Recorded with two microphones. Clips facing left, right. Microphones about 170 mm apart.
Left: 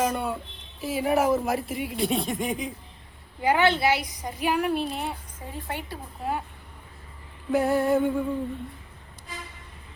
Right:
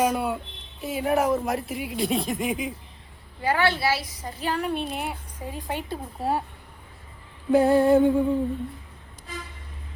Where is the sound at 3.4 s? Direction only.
20° left (ahead or behind); by 5.2 s 5° right (ahead or behind).